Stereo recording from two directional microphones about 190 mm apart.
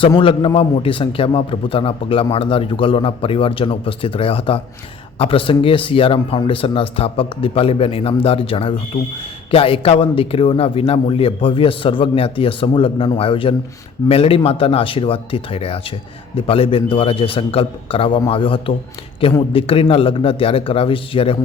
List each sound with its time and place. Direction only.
0.2 s a man's voice: 30° left (ahead or behind)